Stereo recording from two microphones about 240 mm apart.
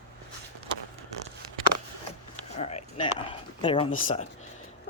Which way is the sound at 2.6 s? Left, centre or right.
Left.